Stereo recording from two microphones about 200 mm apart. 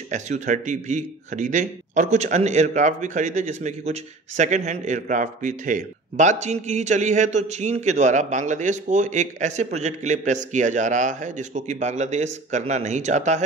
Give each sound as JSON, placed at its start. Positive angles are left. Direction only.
{"t": 0.1, "sound": "speech", "side_deg": -40}